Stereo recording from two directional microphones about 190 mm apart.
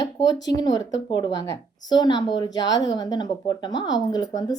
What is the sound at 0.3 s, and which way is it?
Speech, 20° left (ahead or behind).